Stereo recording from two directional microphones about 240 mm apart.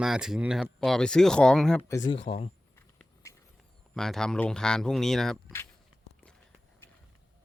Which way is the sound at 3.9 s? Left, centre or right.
Centre.